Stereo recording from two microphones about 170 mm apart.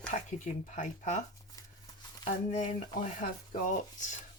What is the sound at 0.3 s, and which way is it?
Speech, 45° left (ahead or behind).